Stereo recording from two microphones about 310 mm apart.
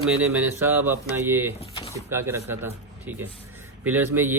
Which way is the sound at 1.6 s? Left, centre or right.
Centre.